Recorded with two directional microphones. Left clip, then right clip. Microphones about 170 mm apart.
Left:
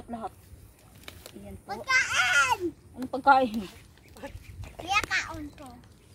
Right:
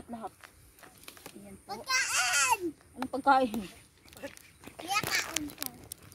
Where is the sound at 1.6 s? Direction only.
Centre (ahead or behind).